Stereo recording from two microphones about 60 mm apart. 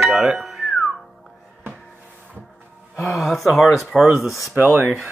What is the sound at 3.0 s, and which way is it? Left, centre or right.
Speech, centre.